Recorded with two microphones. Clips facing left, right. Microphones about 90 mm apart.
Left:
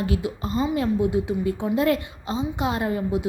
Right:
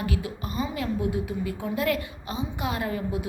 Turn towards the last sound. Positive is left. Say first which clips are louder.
# left 5 dB
turn(degrees=25)  # may be behind; listen again after turning